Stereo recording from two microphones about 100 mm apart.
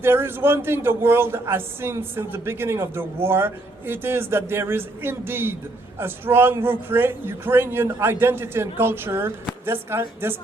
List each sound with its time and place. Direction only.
0.0 s speech: 25° right (ahead or behind)